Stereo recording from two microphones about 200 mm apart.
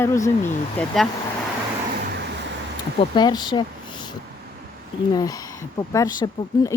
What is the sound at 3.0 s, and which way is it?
Speech, 20° left (ahead or behind).